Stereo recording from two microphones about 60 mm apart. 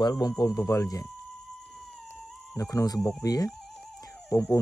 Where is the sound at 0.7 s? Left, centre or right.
Left.